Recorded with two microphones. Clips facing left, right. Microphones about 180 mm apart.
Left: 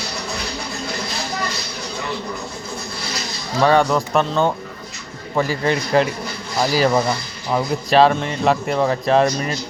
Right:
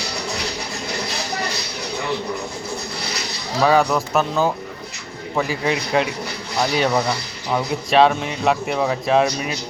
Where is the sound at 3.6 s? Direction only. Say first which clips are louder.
Left 1 dB; centre (ahead or behind).